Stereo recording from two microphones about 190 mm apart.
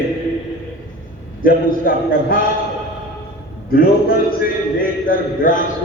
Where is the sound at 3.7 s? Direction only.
50° left (ahead or behind).